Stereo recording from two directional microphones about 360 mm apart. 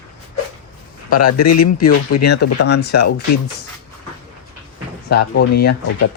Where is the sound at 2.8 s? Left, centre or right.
Left.